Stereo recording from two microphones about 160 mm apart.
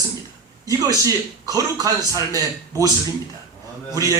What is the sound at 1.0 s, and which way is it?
Speech, 20° right (ahead or behind).